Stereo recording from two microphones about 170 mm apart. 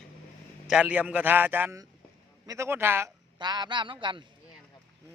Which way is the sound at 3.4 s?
25° right (ahead or behind).